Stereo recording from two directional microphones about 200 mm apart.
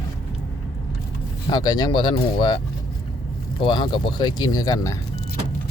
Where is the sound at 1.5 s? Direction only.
20° left (ahead or behind).